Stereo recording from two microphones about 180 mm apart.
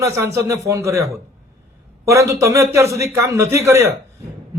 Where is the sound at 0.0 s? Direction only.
15° right (ahead or behind).